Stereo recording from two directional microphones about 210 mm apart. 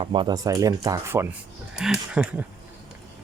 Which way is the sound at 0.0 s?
25° right (ahead or behind).